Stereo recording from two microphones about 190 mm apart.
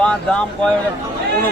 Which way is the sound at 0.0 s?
5° left (ahead or behind).